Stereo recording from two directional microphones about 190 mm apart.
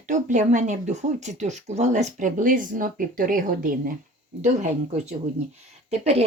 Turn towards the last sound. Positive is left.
turn(degrees=-35)  # may be behind; listen again after turning